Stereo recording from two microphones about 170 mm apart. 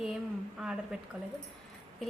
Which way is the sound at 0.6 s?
5° right (ahead or behind).